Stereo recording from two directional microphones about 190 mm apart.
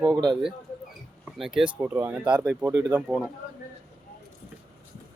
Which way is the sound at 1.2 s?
5° right (ahead or behind).